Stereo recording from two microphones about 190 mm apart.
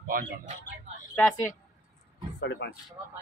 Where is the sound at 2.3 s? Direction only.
65° left (ahead or behind).